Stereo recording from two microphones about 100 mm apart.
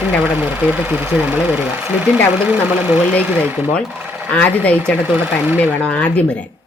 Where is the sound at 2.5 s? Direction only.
15° right (ahead or behind).